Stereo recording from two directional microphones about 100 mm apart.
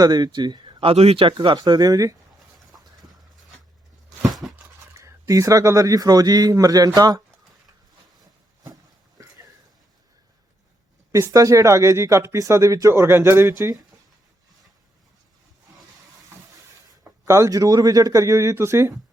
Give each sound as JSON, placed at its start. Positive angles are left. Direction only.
{"t": 0.0, "sound": "speech", "side_deg": -45}
{"t": 4.3, "sound": "a sound", "side_deg": 0}
{"t": 4.9, "sound": "speech", "side_deg": -30}
{"t": 8.6, "sound": "a sound", "side_deg": -35}
{"t": 11.1, "sound": "speech", "side_deg": -35}
{"t": 17.2, "sound": "speech", "side_deg": -30}